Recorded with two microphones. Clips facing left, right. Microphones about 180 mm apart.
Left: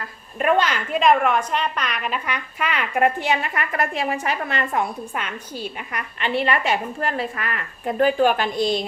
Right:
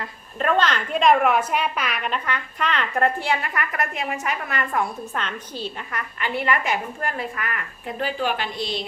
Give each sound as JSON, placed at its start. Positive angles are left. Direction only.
{"t": 0.3, "sound": "a woman's voice", "side_deg": 15}
{"t": 5.1, "sound": "a woman's voice", "side_deg": 10}
{"t": 7.9, "sound": "a woman's voice", "side_deg": 50}